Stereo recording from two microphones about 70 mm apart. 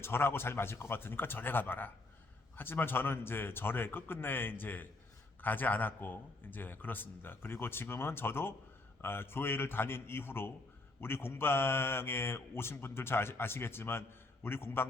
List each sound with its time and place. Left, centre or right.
0.0 s a man's voice: left